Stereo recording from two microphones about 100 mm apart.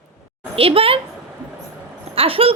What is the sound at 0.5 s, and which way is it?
Speech, 70° right (ahead or behind).